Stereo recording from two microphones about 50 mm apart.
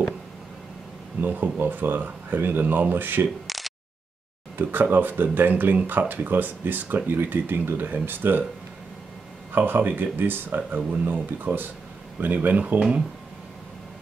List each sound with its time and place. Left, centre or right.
1.2 s speech: right
3.4 s a sound: centre
4.6 s speech: right
9.5 s speech: right